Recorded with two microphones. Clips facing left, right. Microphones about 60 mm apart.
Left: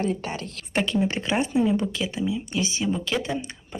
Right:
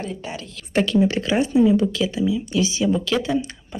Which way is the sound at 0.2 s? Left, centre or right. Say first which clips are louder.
Even; left.